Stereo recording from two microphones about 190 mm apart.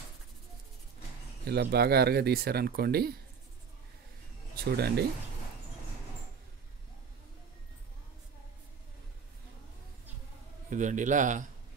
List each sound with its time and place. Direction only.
1.4 s speech: 60° right (ahead or behind)
4.6 s speech: 55° right (ahead or behind)
10.7 s a man's voice: 40° right (ahead or behind)